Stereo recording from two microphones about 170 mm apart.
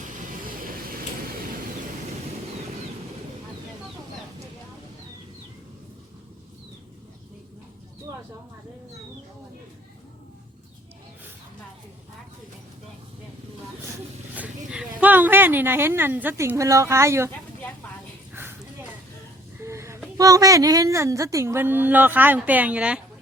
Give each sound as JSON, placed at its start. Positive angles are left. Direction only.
{"t": 0.4, "sound": "vehicle", "side_deg": -55}
{"t": 14.3, "sound": "speech", "side_deg": -5}
{"t": 19.5, "sound": "a sound", "side_deg": -15}
{"t": 20.1, "sound": "a woman's voice", "side_deg": -20}